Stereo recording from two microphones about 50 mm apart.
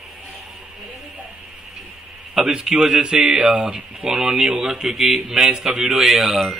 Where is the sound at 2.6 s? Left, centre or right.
Centre.